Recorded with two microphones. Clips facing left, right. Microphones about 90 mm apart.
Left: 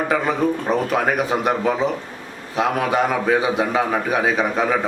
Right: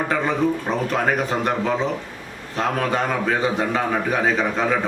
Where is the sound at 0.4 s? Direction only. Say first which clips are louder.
Right 1 dB; 45° left (ahead or behind).